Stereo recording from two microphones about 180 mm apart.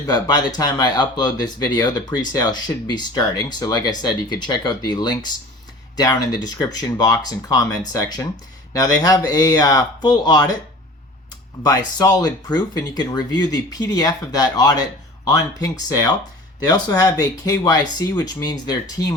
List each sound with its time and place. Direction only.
0.1 s speech: 20° left (ahead or behind)
11.6 s speech: 20° left (ahead or behind)